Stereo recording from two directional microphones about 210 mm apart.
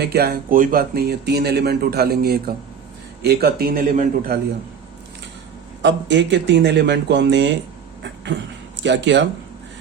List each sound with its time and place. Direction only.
0.0 s speech: 50° right (ahead or behind)
5.8 s speech: 55° right (ahead or behind)
8.0 s a sound: 55° right (ahead or behind)
8.8 s speech: 55° right (ahead or behind)